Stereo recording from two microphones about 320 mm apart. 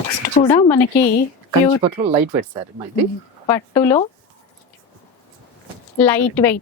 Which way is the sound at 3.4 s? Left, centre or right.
Centre.